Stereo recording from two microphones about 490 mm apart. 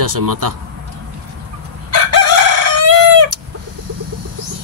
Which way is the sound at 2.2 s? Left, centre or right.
Right.